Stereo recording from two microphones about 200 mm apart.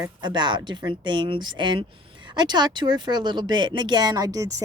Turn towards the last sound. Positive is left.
turn(degrees=-15)  # may be behind; listen again after turning